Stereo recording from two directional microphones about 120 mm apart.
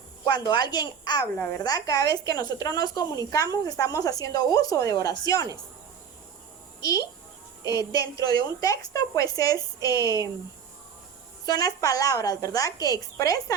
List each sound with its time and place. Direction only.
0.3 s a woman's voice: 40° left (ahead or behind)
7.6 s a woman's voice: 30° left (ahead or behind)
11.4 s a woman's voice: 35° left (ahead or behind)